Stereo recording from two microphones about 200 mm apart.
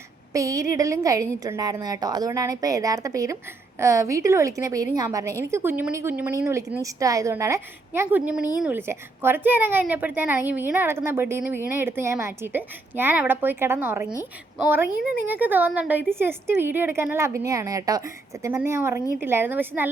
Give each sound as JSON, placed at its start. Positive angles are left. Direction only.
{"t": 0.3, "sound": "a woman's voice", "side_deg": -15}